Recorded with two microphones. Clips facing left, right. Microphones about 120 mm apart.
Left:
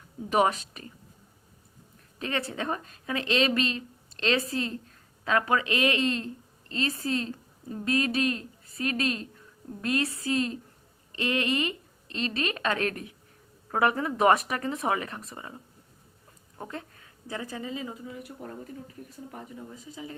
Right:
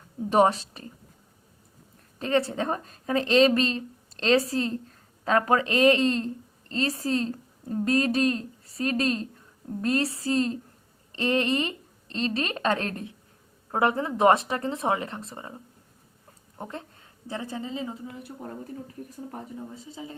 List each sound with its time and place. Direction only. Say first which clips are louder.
0.3 s a woman's voice: right 4 dB; 35° right (ahead or behind)
2.1 s a woman's voice: right 7 dB; 35° right (ahead or behind)
16.6 s a woman's voice: right 1 dB; 20° right (ahead or behind)
19.7 s a woman's voice: right 1 dB; 25° right (ahead or behind)